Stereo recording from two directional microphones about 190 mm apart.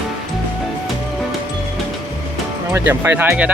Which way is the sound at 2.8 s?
10° right (ahead or behind).